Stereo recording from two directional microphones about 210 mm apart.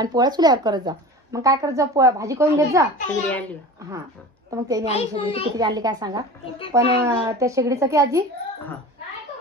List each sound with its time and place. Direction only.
0.0 s speech: 20° right (ahead or behind)
4.5 s speech: 15° right (ahead or behind)
4.9 s a child's voice: 25° left (ahead or behind)
5.6 s speech: 20° right (ahead or behind)